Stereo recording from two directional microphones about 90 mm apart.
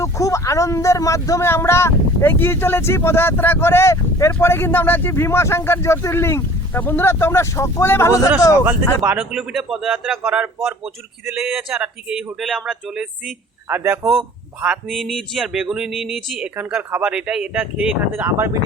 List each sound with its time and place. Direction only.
0.0 s speech: 35° left (ahead or behind)
9.3 s speech: 5° right (ahead or behind)
11.4 s speech: 5° right (ahead or behind)
13.7 s a man's voice: 25° right (ahead or behind)
14.8 s speech: centre (ahead or behind); by 18.5 s 25° right (ahead or behind)